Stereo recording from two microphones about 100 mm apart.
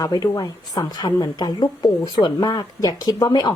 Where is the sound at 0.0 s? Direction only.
40° left (ahead or behind).